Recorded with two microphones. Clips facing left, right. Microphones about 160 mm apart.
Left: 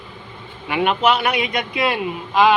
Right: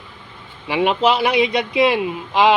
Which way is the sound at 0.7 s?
25° right (ahead or behind).